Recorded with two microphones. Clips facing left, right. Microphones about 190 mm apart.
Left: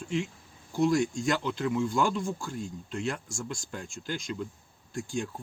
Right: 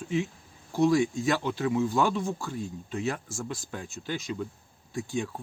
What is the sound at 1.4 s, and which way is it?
Speech, 50° right (ahead or behind).